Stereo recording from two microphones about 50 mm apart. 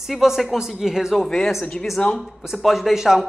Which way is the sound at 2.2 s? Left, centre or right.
Centre.